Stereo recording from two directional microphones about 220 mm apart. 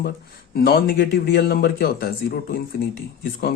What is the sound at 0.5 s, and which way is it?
Speech, 45° left (ahead or behind).